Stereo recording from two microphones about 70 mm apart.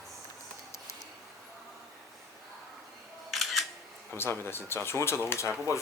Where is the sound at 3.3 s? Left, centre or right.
Centre.